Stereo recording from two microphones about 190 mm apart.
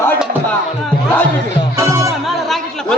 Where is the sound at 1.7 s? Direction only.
15° right (ahead or behind).